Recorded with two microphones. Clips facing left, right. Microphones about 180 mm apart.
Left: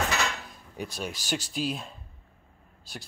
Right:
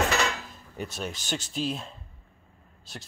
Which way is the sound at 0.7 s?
Centre (ahead or behind).